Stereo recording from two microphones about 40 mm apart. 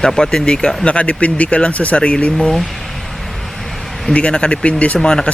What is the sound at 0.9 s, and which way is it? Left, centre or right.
Speech, left.